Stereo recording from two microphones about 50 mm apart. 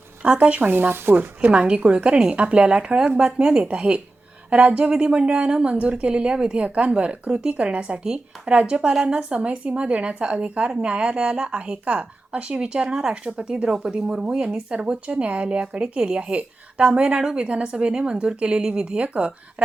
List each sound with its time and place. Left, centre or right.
0.2 s speech: right
0.6 s speech: right
1.5 s speech: right